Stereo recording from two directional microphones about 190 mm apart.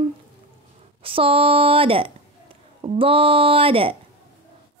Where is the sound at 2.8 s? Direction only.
30° right (ahead or behind).